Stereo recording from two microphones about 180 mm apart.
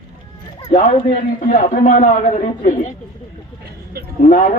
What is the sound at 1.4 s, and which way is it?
A man's voice, 45° left (ahead or behind).